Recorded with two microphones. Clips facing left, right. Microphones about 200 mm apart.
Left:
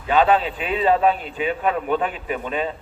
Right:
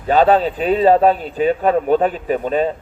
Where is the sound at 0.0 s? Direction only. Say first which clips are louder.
Right 4 dB; 40° right (ahead or behind).